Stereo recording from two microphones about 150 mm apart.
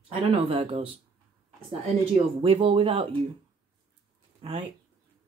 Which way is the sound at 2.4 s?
40° right (ahead or behind).